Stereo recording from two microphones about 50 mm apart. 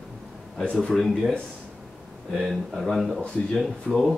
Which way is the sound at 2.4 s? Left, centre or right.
Centre.